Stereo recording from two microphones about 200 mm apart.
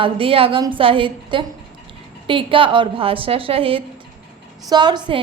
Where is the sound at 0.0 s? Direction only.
25° right (ahead or behind).